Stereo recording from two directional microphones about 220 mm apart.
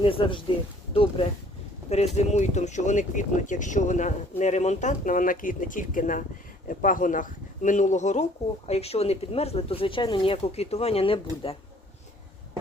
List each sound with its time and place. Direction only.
0.0 s speech: 25° left (ahead or behind)